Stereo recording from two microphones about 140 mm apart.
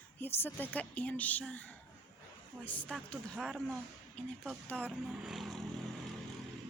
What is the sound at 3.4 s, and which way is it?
A woman's voice, centre (ahead or behind).